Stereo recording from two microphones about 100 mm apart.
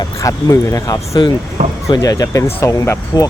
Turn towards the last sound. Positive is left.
turn(degrees=30)  # may be behind; listen again after turning